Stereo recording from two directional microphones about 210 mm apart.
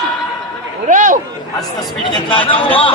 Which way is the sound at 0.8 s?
35° right (ahead or behind).